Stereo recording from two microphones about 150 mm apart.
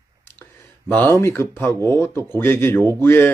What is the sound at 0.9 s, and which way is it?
Speech, 10° left (ahead or behind).